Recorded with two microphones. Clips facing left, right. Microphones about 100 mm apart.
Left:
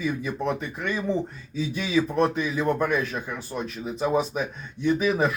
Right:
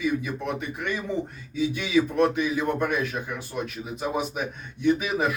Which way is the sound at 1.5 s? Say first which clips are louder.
Right 1 dB; 35° left (ahead or behind).